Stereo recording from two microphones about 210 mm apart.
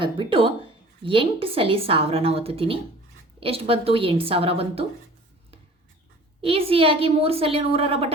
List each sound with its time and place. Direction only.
0.0 s a woman's voice: 25° right (ahead or behind)
6.4 s a woman's voice: 25° right (ahead or behind)